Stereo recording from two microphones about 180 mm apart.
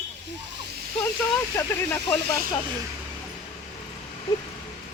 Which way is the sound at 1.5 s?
15° left (ahead or behind).